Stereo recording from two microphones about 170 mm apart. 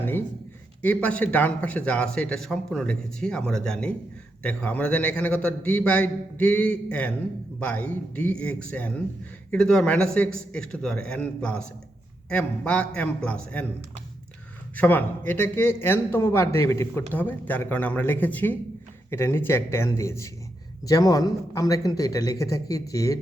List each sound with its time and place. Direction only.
0.0 s a sound: 10° left (ahead or behind)
0.8 s a man's voice: 10° left (ahead or behind)
14.8 s a man's voice: 10° left (ahead or behind)